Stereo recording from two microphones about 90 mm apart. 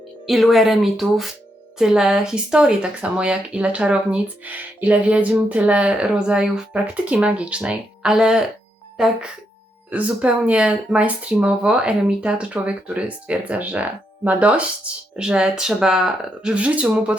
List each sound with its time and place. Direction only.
0.3 s speech: centre (ahead or behind)
9.9 s speech: 15° right (ahead or behind)